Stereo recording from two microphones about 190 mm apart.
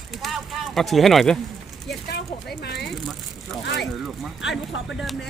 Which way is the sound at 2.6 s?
60° left (ahead or behind).